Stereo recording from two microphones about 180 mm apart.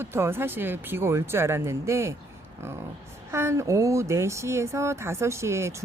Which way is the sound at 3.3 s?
15° right (ahead or behind).